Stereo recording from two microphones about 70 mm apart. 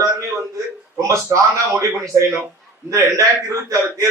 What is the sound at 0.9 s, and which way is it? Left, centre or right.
A man's voice, right.